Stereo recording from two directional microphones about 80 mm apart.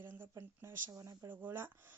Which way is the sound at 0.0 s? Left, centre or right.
Right.